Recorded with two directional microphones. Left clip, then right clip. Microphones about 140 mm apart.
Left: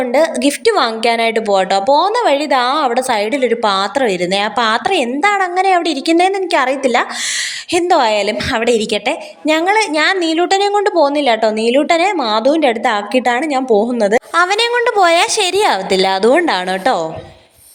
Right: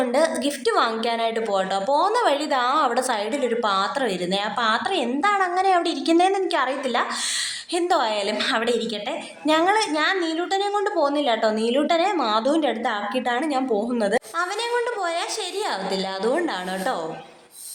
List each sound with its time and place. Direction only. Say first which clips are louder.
0.0 s a woman's voice: left 8 dB; 35° left (ahead or behind)
14.3 s a woman's voice: left 11 dB; 70° left (ahead or behind)